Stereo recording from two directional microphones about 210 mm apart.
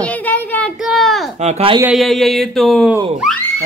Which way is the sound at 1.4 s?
25° right (ahead or behind).